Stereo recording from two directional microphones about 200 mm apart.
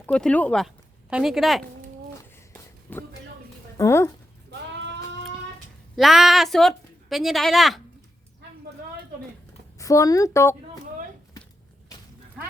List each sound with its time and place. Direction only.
0.0 s a woman's voice: 5° left (ahead or behind)
2.9 s speech: 10° left (ahead or behind)
6.0 s a woman's voice: centre (ahead or behind)
9.7 s speech: 15° left (ahead or behind)